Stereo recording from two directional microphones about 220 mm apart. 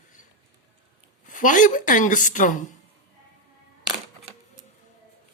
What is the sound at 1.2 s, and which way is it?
A woman's voice, 35° left (ahead or behind).